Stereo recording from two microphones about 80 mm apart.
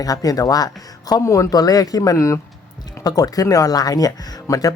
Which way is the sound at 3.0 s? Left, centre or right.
Left.